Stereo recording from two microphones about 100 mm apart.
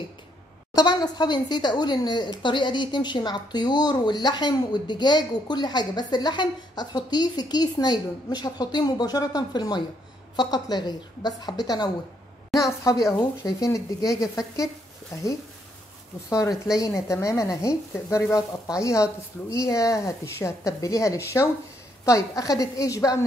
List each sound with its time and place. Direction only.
0.7 s speech: 45° left (ahead or behind)
13.4 s speech: 35° left (ahead or behind)